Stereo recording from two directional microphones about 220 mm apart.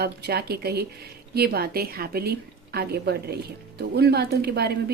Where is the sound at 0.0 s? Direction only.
45° right (ahead or behind).